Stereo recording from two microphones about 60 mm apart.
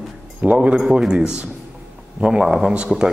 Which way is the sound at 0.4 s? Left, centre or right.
Right.